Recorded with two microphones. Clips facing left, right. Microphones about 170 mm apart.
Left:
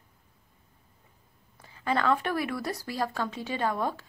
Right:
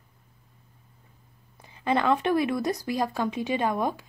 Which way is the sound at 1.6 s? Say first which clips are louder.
Right 3 dB; 20° right (ahead or behind).